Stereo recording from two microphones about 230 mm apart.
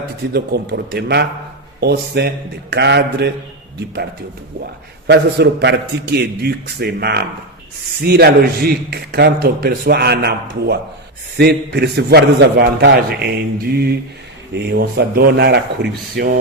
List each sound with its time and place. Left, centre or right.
0.3 s a man's voice: right
5.0 s a man's voice: right